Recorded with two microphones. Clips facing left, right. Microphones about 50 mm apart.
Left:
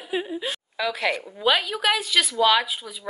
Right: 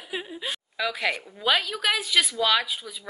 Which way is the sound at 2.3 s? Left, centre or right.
Centre.